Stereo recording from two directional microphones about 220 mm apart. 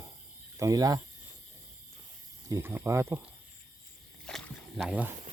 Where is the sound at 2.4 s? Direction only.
10° right (ahead or behind).